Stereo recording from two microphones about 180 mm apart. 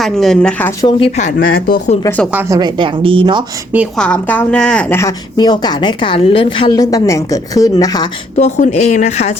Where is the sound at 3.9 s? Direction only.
5° left (ahead or behind).